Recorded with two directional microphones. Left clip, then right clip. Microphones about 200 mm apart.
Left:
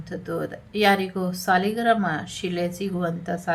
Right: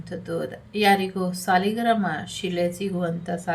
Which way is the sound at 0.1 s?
15° left (ahead or behind).